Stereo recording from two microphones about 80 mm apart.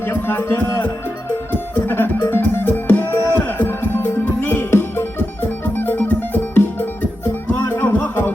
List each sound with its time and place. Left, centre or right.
0.0 s music: left